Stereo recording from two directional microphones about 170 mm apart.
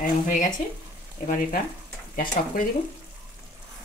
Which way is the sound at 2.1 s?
55° left (ahead or behind).